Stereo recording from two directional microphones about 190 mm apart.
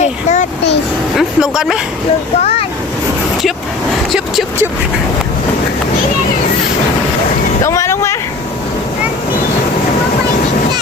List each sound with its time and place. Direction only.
0.0 s a sound: 40° left (ahead or behind)
1.1 s vehicle: centre (ahead or behind)
2.4 s waves: 30° left (ahead or behind)
7.6 s vehicle: 15° left (ahead or behind)